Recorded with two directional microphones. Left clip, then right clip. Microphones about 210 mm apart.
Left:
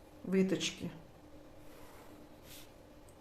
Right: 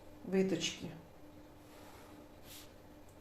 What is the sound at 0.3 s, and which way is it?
Speech, 35° left (ahead or behind).